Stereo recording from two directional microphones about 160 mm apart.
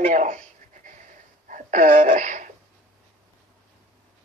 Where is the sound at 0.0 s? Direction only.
50° right (ahead or behind).